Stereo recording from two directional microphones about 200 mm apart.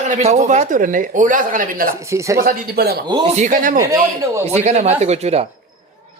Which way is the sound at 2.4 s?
50° right (ahead or behind).